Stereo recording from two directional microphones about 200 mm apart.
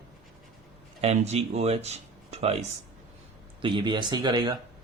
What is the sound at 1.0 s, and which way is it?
Speech, 35° right (ahead or behind).